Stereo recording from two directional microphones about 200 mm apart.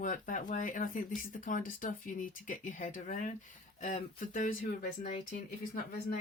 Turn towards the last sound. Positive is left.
turn(degrees=45)  # may be behind; listen again after turning